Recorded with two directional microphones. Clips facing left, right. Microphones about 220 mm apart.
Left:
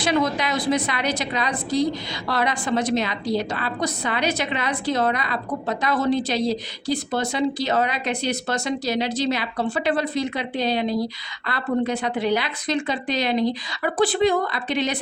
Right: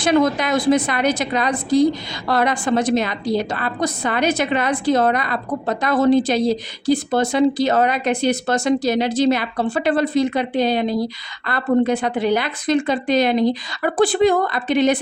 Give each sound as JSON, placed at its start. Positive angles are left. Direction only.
{"t": 0.0, "sound": "a woman's voice", "side_deg": -50}